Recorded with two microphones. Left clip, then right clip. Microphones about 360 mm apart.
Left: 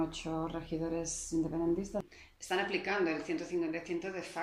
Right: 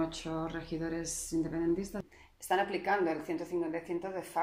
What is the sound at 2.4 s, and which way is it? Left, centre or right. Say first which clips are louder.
Speech: right 3 dB; right.